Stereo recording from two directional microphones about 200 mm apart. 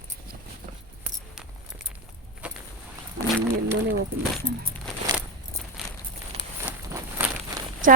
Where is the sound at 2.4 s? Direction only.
5° right (ahead or behind).